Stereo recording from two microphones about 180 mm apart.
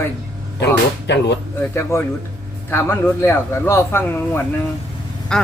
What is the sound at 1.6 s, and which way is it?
Speech, 15° left (ahead or behind).